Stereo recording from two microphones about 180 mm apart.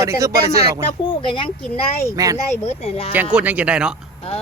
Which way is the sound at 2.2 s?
20° right (ahead or behind).